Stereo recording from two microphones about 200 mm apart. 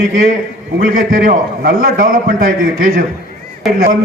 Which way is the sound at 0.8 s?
45° right (ahead or behind).